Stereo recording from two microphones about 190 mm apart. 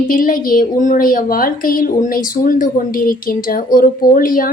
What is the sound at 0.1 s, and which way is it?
A woman's voice, 50° left (ahead or behind).